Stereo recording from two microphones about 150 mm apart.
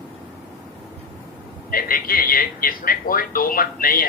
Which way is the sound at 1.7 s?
75° left (ahead or behind).